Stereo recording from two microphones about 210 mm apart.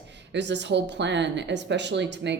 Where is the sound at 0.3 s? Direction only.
55° right (ahead or behind).